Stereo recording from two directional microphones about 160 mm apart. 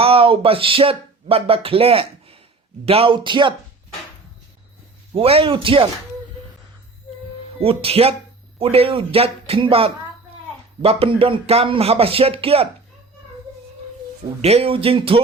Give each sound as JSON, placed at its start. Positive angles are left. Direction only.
{"t": 0.0, "sound": "a man's voice", "side_deg": -35}
{"t": 5.1, "sound": "a man's voice", "side_deg": -35}
{"t": 7.6, "sound": "a man's voice", "side_deg": -35}
{"t": 14.4, "sound": "a man's voice", "side_deg": -40}